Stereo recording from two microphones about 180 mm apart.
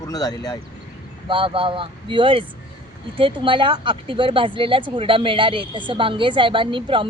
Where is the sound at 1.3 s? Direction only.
30° right (ahead or behind).